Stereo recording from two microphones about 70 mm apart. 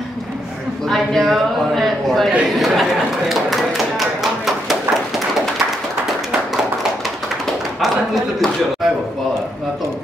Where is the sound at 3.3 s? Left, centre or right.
Centre.